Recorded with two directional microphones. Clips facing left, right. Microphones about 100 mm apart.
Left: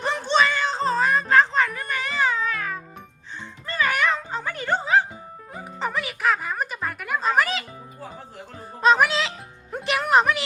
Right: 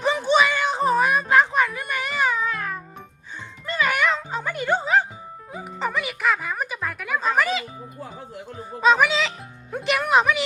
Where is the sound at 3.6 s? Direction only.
10° right (ahead or behind).